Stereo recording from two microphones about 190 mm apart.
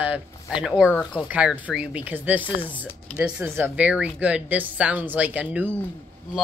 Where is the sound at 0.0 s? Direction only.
5° right (ahead or behind).